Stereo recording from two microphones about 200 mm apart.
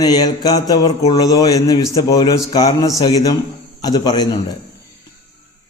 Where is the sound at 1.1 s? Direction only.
20° left (ahead or behind).